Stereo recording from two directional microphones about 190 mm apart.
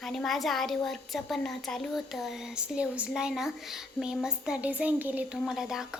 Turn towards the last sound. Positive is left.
turn(degrees=0)  # may be behind; listen again after turning